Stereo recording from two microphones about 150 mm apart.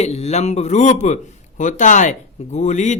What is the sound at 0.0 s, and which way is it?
A man's voice, 45° left (ahead or behind).